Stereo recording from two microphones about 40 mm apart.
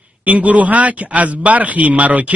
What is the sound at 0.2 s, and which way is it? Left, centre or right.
Speech, right.